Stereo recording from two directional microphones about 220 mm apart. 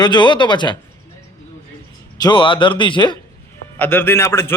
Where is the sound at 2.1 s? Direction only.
20° left (ahead or behind).